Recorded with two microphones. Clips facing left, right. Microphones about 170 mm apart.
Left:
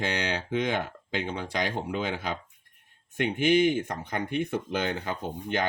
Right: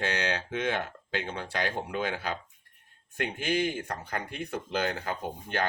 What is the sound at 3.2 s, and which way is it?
Speech, 20° left (ahead or behind).